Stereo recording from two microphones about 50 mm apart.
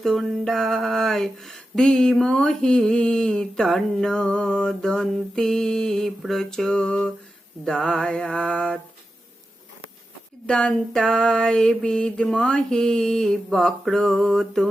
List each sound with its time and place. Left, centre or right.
0.0 s mantra: centre
3.6 s a sound: centre
4.1 s mantra: centre
10.4 s mantra: centre